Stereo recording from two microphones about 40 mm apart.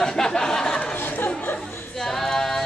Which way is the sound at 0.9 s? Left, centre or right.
Left.